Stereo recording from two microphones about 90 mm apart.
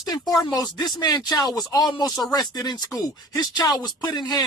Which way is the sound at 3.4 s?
55° left (ahead or behind).